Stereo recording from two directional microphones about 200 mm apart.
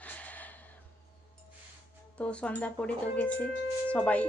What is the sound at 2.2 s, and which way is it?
Speech, 5° left (ahead or behind).